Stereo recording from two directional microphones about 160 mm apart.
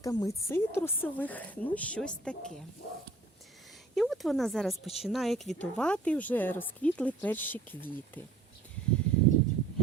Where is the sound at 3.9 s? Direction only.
Centre (ahead or behind).